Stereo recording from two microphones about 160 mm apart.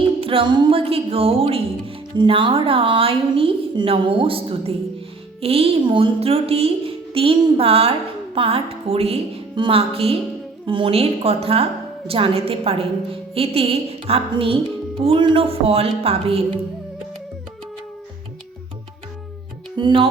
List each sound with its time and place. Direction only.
0.2 s a woman's voice: 35° right (ahead or behind)
19.7 s music: 30° right (ahead or behind)